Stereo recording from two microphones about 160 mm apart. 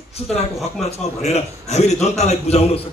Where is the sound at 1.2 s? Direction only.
45° left (ahead or behind).